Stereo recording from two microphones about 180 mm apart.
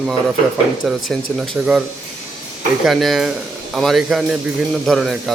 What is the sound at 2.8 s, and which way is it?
A man's voice, centre (ahead or behind).